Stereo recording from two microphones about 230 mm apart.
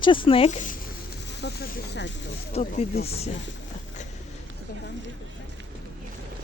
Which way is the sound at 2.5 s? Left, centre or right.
Left.